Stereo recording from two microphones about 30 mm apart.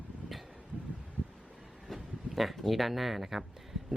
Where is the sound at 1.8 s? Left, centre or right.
Centre.